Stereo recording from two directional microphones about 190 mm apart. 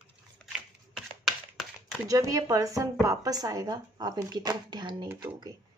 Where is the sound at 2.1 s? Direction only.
15° right (ahead or behind).